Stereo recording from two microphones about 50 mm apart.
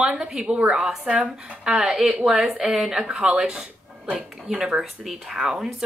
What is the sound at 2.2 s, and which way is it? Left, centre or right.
A woman's voice, centre.